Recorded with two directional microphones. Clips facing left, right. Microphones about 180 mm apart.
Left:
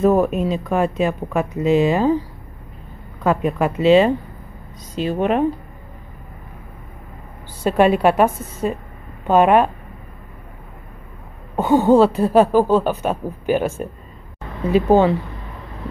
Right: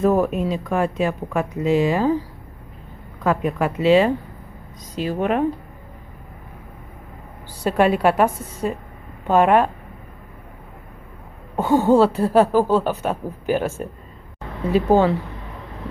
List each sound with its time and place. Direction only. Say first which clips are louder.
0.0 s speech: left 2 dB; 20° left (ahead or behind)
3.3 s speech: left 2 dB; 25° left (ahead or behind)
7.6 s speech: left 2 dB; 20° left (ahead or behind)
11.5 s speech: left 2 dB; 20° left (ahead or behind)